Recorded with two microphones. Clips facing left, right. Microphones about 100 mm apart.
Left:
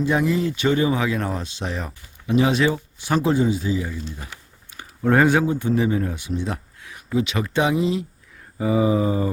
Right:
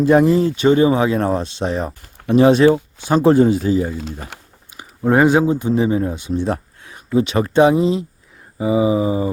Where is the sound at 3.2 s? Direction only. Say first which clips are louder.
Right 10 dB; 55° right (ahead or behind).